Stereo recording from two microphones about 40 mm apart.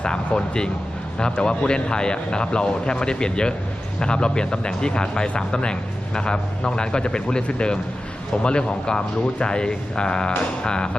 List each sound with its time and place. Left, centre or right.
0.0 s speech: left